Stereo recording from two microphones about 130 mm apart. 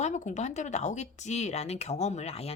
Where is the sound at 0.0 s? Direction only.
65° left (ahead or behind).